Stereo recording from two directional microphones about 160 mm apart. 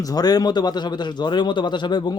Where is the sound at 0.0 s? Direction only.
25° left (ahead or behind).